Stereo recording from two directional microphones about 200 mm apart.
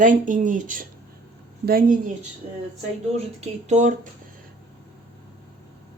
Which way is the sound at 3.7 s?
35° right (ahead or behind).